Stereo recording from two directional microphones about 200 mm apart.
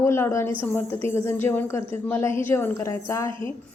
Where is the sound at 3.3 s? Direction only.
25° right (ahead or behind).